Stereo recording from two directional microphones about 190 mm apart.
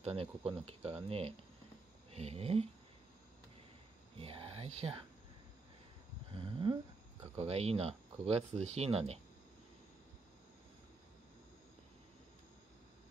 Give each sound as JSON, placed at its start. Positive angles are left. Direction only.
{"t": 0.0, "sound": "speech", "side_deg": -30}
{"t": 4.2, "sound": "speech", "side_deg": -30}
{"t": 6.3, "sound": "a sound", "side_deg": -25}
{"t": 7.3, "sound": "speech", "side_deg": -35}